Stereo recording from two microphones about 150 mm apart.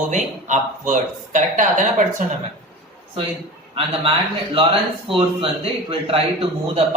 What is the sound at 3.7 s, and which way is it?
A man's voice, 40° right (ahead or behind).